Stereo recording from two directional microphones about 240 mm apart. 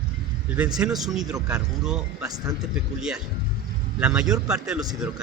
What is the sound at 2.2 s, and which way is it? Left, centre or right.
Speech, centre.